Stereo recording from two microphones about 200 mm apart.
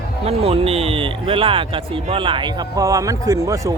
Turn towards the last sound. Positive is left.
turn(degrees=-15)  # may be behind; listen again after turning